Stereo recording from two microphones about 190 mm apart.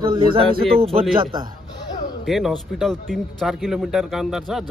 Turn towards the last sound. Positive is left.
turn(degrees=0)  # may be behind; listen again after turning